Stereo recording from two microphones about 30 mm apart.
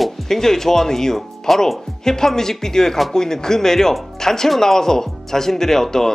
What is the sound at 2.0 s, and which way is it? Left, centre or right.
Speech, centre.